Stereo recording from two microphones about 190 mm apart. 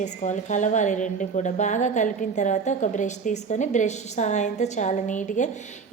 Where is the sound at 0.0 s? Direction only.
40° left (ahead or behind).